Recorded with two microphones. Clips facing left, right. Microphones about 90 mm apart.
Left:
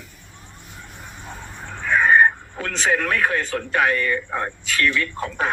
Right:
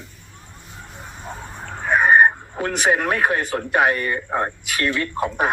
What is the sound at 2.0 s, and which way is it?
A man's voice, 20° right (ahead or behind).